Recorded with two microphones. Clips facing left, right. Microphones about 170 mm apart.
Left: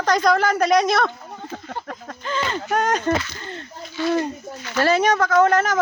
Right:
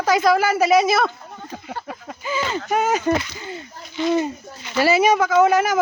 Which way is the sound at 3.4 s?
10° right (ahead or behind).